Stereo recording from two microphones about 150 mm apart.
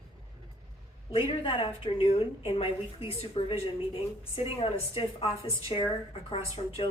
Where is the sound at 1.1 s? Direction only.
40° left (ahead or behind).